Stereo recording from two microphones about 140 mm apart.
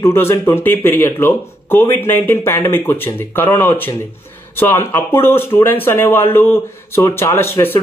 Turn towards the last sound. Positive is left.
turn(degrees=15)  # may be behind; listen again after turning